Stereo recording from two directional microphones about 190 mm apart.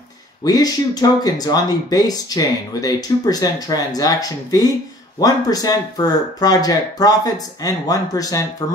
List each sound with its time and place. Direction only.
0.4 s speech: 20° left (ahead or behind)